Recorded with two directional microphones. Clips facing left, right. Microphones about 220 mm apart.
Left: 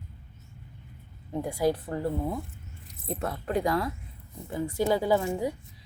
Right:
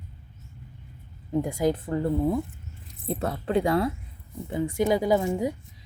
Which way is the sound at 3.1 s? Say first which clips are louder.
Right 4 dB; 30° right (ahead or behind).